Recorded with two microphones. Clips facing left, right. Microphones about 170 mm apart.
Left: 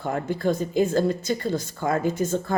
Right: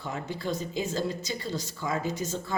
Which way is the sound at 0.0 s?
50° left (ahead or behind).